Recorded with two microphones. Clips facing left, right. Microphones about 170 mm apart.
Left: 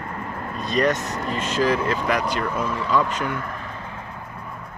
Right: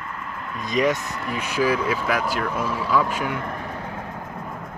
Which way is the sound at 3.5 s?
50° right (ahead or behind).